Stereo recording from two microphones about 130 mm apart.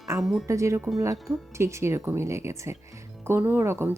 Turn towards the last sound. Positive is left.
turn(degrees=-20)  # may be behind; listen again after turning